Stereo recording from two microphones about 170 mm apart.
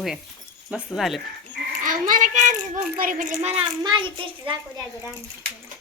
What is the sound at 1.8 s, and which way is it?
A child's voice, 50° right (ahead or behind).